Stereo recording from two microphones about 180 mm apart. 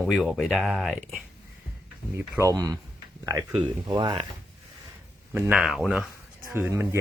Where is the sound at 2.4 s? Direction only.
20° right (ahead or behind).